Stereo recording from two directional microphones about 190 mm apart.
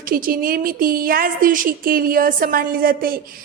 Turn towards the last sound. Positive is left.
turn(degrees=-50)  # may be behind; listen again after turning